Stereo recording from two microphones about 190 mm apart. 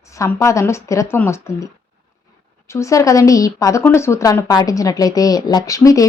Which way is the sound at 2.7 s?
15° left (ahead or behind).